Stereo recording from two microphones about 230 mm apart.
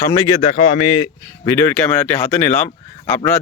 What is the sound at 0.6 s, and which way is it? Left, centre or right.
Speech, left.